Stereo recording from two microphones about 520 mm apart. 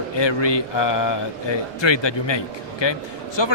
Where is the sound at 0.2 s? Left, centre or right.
Left.